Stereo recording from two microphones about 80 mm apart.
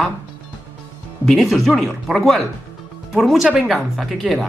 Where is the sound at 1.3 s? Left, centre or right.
Centre.